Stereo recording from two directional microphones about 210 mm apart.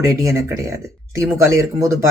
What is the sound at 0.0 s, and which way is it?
Speech, 15° right (ahead or behind).